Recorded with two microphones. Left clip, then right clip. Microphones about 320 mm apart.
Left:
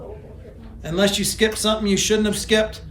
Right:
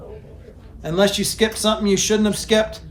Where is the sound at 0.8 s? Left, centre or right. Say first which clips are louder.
Right 2 dB; centre.